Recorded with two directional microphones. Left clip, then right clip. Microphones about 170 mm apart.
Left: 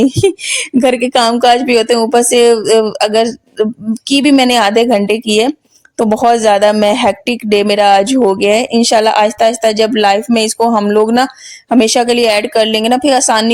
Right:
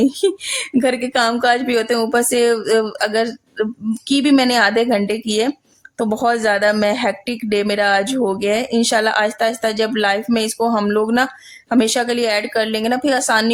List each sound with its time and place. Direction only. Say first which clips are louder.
0.1 s speech: left 6 dB; 30° left (ahead or behind)